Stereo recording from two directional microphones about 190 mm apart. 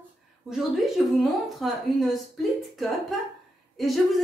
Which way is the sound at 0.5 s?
Centre (ahead or behind).